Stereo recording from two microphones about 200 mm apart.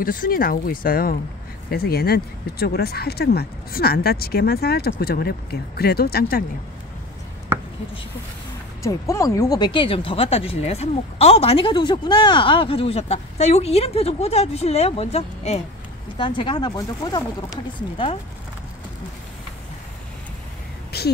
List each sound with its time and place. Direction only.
0.0 s speech: 45° left (ahead or behind)
8.8 s speech: 15° left (ahead or behind)
20.9 s a sound: 55° left (ahead or behind)